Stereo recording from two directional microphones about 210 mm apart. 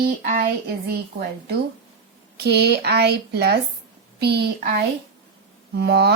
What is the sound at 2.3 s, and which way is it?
A woman's voice, 50° right (ahead or behind).